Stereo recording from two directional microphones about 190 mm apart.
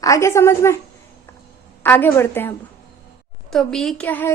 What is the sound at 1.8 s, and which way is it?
Speech, 10° left (ahead or behind).